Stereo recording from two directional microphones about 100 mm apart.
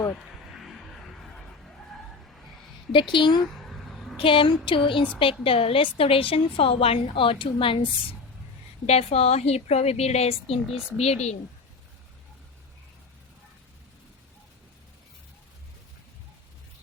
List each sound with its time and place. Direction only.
0.4 s vehicle: centre (ahead or behind)
2.9 s a woman's voice: 55° left (ahead or behind)
3.5 s a sound: centre (ahead or behind)
4.2 s a woman's voice: 60° left (ahead or behind)
8.9 s a woman's voice: 90° left
10.7 s speech: 5° right (ahead or behind)
10.9 s a woman's voice: 90° left